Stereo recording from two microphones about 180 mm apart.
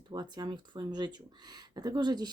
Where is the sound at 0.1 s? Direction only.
25° right (ahead or behind).